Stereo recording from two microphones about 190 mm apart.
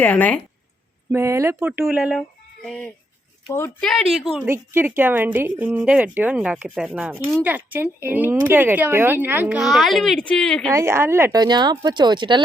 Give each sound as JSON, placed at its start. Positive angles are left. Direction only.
{"t": 0.0, "sound": "speech", "side_deg": 10}
{"t": 1.1, "sound": "a woman's voice", "side_deg": -15}
{"t": 4.4, "sound": "speech", "side_deg": -10}
{"t": 10.7, "sound": "speech", "side_deg": -15}